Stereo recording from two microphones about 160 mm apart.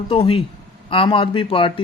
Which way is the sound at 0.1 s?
35° left (ahead or behind).